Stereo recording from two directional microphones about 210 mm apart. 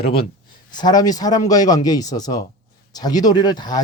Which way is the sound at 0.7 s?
20° left (ahead or behind).